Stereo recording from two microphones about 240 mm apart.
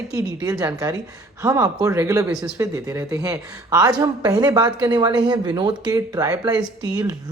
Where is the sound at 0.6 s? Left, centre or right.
Centre.